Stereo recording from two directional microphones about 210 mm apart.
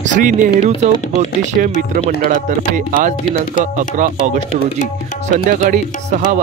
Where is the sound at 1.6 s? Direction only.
45° right (ahead or behind).